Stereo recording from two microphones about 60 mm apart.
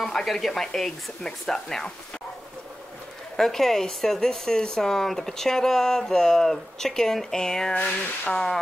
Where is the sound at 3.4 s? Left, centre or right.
Centre.